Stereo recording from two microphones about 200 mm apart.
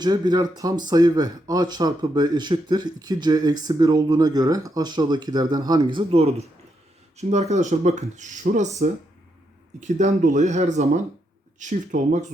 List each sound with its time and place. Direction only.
0.0 s speech: 20° right (ahead or behind); by 8.7 s 35° right (ahead or behind)
9.8 s speech: 35° right (ahead or behind)